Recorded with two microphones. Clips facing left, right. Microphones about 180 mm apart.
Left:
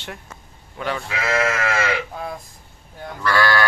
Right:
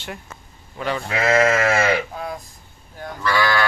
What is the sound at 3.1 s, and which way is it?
Speech, centre (ahead or behind).